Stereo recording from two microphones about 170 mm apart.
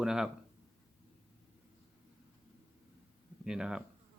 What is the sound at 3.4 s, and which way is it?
Speech, 5° right (ahead or behind).